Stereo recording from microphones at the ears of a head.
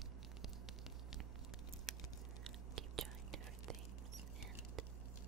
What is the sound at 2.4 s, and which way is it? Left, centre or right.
Whispering, right.